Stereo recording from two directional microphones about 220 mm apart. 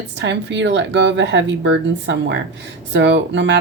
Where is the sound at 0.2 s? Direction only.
55° right (ahead or behind).